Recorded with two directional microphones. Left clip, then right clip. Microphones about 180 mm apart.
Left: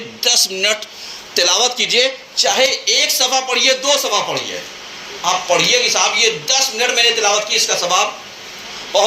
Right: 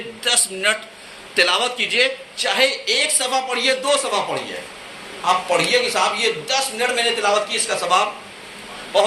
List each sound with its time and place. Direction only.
0.2 s a man's voice: 25° left (ahead or behind)
5.2 s a man's voice: 20° left (ahead or behind)